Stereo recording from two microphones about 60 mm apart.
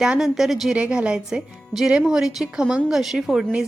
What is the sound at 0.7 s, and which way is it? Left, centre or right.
A woman's voice, centre.